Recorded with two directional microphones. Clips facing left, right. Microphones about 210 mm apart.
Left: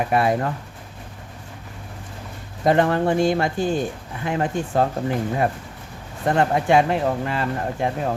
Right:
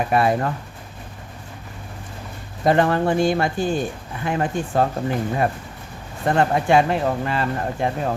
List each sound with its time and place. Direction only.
0.0 s speech: 15° left (ahead or behind)
2.6 s speech: 20° left (ahead or behind)